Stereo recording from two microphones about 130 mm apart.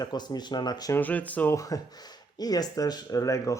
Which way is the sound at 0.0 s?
35° left (ahead or behind).